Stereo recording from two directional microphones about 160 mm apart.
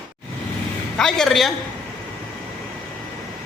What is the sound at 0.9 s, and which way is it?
Speech, 5° left (ahead or behind).